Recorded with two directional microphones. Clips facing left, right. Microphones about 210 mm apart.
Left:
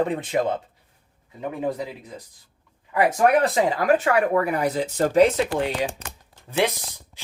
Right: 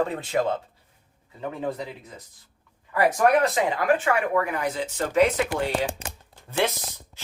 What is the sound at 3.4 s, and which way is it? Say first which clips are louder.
Speech: left 2 dB; 35° left (ahead or behind).